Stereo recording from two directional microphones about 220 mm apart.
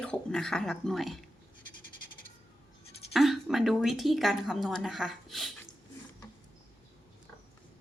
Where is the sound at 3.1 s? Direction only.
Centre (ahead or behind).